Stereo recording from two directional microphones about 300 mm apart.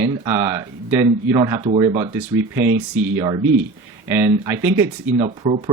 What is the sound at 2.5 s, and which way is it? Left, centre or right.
Speech, right.